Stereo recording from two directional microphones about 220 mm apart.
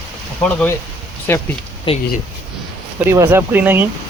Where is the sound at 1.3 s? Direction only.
10° left (ahead or behind).